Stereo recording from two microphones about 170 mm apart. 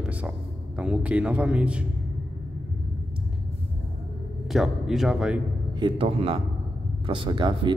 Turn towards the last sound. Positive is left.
turn(degrees=-25)  # may be behind; listen again after turning